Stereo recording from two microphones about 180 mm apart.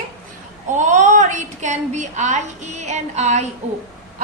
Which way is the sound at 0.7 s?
40° right (ahead or behind).